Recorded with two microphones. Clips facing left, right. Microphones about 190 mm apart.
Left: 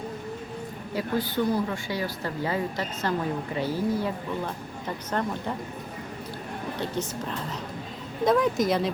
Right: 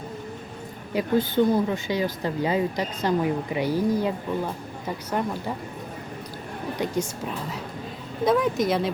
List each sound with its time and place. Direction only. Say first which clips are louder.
0.9 s speech: right 5 dB; 20° right (ahead or behind)
6.7 s speech: right 4 dB; 10° right (ahead or behind)